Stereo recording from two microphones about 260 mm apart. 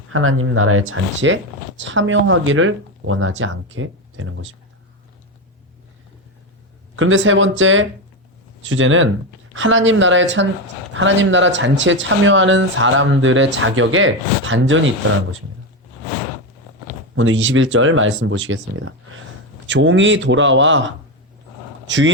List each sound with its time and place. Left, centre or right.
0.1 s speech: right
6.9 s speech: right
17.2 s a man's voice: right